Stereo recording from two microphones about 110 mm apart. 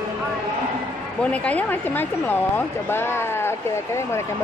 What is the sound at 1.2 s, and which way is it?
Speech, 10° left (ahead or behind).